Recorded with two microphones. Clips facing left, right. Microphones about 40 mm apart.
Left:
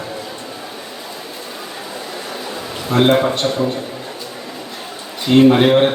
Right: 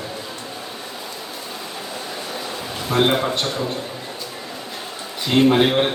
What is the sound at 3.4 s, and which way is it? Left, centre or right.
Speech, centre.